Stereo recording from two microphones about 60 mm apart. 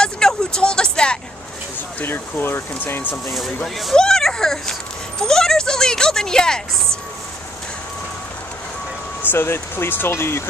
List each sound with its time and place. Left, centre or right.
0.0 s vehicle: centre
2.0 s speech: left
3.3 s speech: centre
9.2 s speech: left